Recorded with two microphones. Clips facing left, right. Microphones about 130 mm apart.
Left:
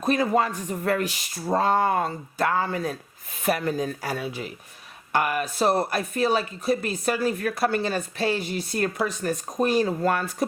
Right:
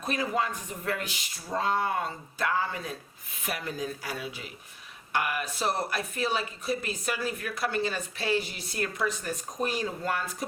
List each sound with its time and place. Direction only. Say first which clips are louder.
0.0 s speech: left 7 dB; 50° left (ahead or behind)